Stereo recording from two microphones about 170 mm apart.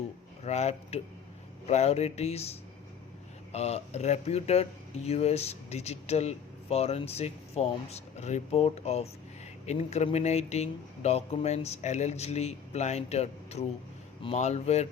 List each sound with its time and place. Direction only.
0.4 s speech: 40° left (ahead or behind)